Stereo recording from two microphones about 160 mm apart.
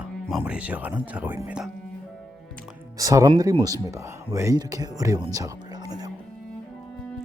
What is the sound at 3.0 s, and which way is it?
Speech, 20° right (ahead or behind).